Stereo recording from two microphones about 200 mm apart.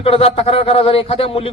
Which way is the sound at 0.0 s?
30° left (ahead or behind).